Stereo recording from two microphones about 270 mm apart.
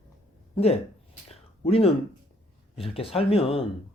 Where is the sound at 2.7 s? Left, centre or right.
Left.